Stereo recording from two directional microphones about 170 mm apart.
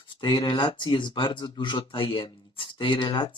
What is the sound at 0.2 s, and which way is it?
Speech, 30° left (ahead or behind).